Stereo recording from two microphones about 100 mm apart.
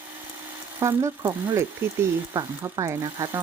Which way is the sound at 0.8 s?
25° right (ahead or behind).